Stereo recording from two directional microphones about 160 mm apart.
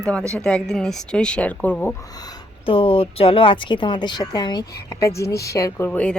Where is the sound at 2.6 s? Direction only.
35° left (ahead or behind).